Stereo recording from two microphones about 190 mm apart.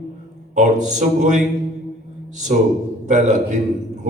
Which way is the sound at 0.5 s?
40° right (ahead or behind).